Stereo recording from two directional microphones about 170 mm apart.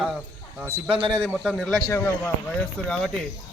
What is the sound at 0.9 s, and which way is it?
Speech, 30° right (ahead or behind).